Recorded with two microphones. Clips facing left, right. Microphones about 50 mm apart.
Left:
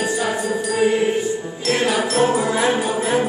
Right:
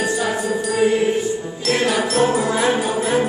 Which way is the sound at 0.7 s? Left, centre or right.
Centre.